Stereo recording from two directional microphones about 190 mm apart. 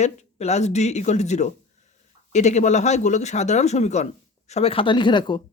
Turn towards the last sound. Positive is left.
turn(degrees=25)  # may be behind; listen again after turning